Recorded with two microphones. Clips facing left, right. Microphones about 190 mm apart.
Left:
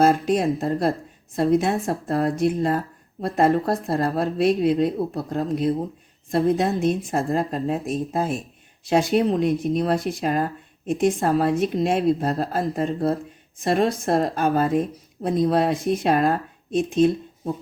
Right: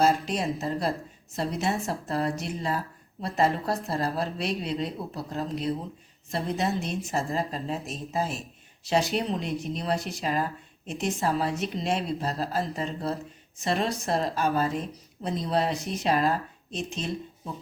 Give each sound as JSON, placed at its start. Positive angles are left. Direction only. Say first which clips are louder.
{"t": 0.0, "sound": "a woman's voice", "louder": "left 6 dB", "side_deg": 50}